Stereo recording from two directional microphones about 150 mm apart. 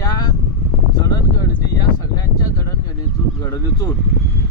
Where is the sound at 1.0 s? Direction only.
25° left (ahead or behind).